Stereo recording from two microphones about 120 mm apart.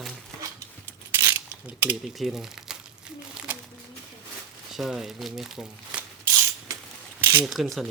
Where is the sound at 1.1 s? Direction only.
20° right (ahead or behind).